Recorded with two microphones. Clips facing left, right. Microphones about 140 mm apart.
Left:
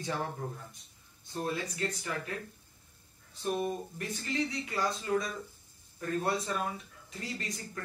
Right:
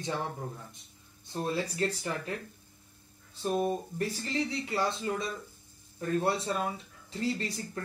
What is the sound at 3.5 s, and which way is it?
Speech, 30° right (ahead or behind).